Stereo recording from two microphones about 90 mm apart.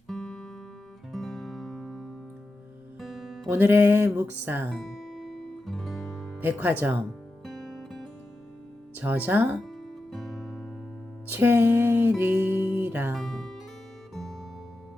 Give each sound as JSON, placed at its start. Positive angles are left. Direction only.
{"t": 0.1, "sound": "music", "side_deg": 5}
{"t": 3.5, "sound": "music", "side_deg": -20}
{"t": 4.7, "sound": "music", "side_deg": 0}
{"t": 6.4, "sound": "music", "side_deg": -20}
{"t": 7.4, "sound": "music", "side_deg": 5}
{"t": 9.0, "sound": "music", "side_deg": -20}
{"t": 9.6, "sound": "music", "side_deg": 0}
{"t": 11.3, "sound": "music", "side_deg": -25}
{"t": 13.1, "sound": "music", "side_deg": 5}